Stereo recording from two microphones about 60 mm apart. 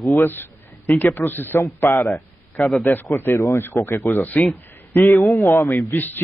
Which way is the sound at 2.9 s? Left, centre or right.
Left.